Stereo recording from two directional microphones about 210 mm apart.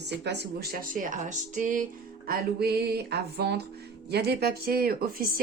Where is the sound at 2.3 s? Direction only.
50° right (ahead or behind).